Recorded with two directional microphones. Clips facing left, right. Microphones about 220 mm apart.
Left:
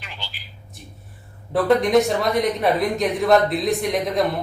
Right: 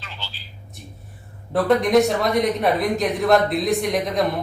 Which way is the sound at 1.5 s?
Centre (ahead or behind).